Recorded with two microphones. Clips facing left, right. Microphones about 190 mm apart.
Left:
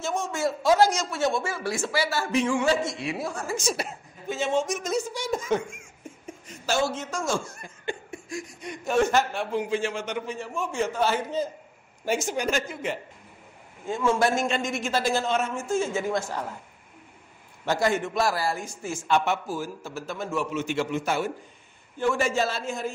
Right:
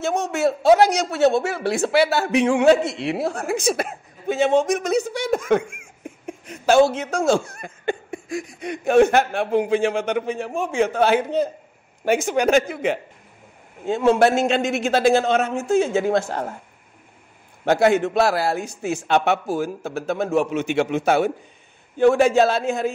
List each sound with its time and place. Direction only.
0.0 s a man's voice: 65° right (ahead or behind)
17.6 s speech: 65° right (ahead or behind)